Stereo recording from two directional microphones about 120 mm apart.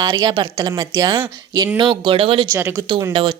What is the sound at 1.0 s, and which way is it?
Speech, 40° right (ahead or behind).